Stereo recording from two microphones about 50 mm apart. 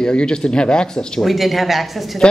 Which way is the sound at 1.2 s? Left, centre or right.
Centre.